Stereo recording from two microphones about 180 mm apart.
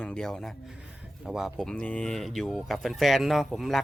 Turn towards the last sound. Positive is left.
turn(degrees=0)  # may be behind; listen again after turning